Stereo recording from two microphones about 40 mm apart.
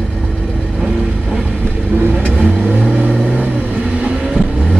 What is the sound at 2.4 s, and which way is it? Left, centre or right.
Vehicle, right.